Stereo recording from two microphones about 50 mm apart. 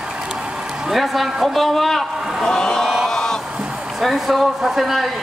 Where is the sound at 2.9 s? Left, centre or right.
Centre.